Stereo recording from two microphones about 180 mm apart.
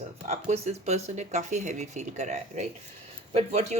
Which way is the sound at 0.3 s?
35° right (ahead or behind).